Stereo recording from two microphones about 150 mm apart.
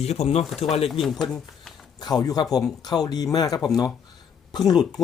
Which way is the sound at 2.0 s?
25° left (ahead or behind).